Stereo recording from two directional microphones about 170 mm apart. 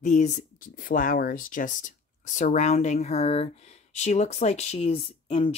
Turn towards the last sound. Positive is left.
turn(degrees=35)  # may be behind; listen again after turning